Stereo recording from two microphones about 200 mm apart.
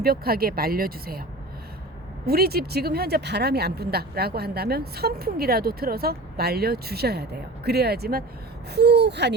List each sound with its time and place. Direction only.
0.0 s speech: 50° right (ahead or behind)
2.2 s speech: 50° right (ahead or behind)